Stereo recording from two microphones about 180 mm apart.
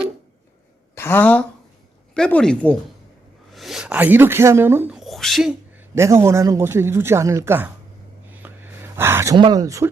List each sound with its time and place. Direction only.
0.9 s a woman's voice: 10° left (ahead or behind)
5.9 s speech: 15° right (ahead or behind)
8.3 s gasp: 10° right (ahead or behind)
9.4 s speech: 20° right (ahead or behind)